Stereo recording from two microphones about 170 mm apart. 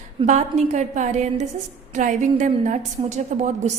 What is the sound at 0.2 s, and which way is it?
A woman's voice, 40° right (ahead or behind).